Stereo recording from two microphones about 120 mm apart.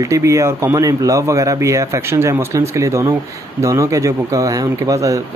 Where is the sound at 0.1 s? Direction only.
25° right (ahead or behind).